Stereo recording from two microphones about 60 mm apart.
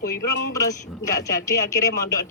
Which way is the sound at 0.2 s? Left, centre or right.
Left.